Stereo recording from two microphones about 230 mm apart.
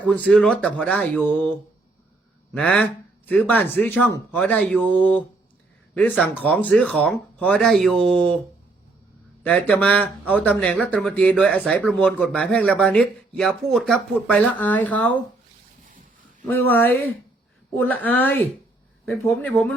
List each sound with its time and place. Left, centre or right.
0.0 s speech: centre
2.5 s speech: centre
9.4 s speech: centre
15.9 s dog: right
17.7 s speech: centre